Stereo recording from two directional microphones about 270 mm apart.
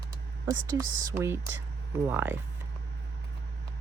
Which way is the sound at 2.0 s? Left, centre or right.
Centre.